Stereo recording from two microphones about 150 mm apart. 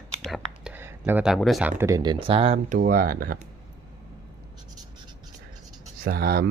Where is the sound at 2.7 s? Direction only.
65° right (ahead or behind).